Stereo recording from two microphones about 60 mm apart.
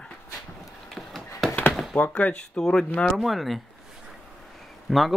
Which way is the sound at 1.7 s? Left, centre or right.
Centre.